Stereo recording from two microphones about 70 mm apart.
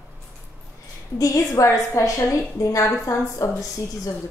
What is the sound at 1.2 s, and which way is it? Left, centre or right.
Speech, left.